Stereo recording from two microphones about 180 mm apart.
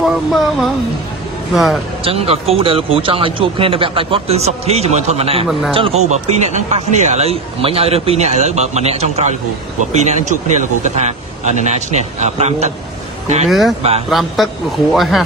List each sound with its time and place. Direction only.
0.0 s speech: centre (ahead or behind)
2.0 s speech: 35° right (ahead or behind)
13.5 s speech: centre (ahead or behind)